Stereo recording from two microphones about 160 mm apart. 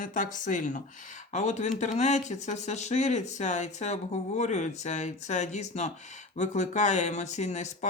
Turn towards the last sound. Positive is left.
turn(degrees=45)  # may be behind; listen again after turning